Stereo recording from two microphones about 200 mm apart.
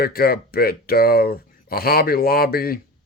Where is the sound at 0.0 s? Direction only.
50° left (ahead or behind).